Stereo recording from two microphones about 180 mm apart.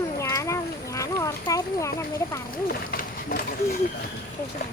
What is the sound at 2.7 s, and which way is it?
Speech, 55° left (ahead or behind).